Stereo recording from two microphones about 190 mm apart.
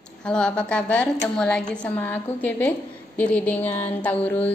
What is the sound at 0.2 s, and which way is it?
A woman's voice, 5° left (ahead or behind).